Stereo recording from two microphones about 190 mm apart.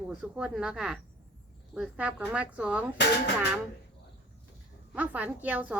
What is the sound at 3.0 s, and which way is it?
Speech, 65° left (ahead or behind).